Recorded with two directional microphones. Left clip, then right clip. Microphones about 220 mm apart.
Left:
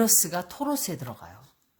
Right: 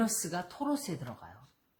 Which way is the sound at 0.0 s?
50° left (ahead or behind).